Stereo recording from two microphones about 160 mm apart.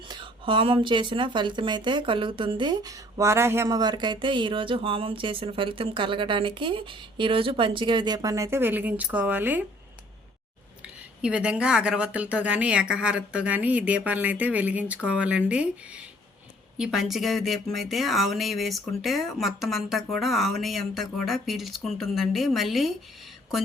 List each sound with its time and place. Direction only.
0.1 s speech: 30° right (ahead or behind); by 9.6 s 10° right (ahead or behind)
10.8 s speech: 5° right (ahead or behind)
16.7 s speech: 5° right (ahead or behind)